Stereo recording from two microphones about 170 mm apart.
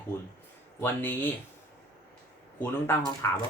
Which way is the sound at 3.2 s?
15° left (ahead or behind).